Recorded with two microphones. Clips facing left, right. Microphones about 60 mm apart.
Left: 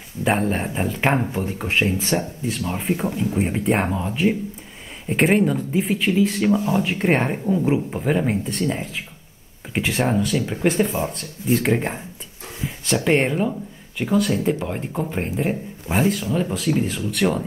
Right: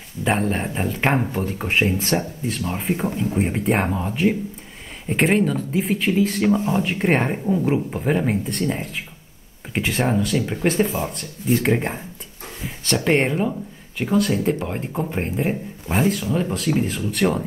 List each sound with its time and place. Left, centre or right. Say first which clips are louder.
0.2 s speech: left 1 dB; centre
12.5 s a sound: left 1 dB; centre
14.2 s speech: even; centre
15.9 s speech: even; centre
16.3 s speech: even; centre